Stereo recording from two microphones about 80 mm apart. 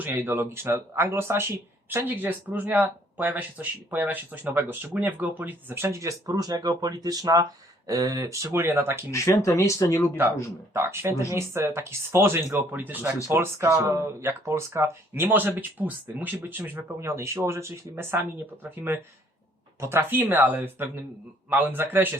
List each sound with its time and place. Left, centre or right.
0.0 s speech: right
8.5 s speech: right
9.1 s speech: left
10.8 s speech: right
13.3 s speech: right
17.1 s speech: right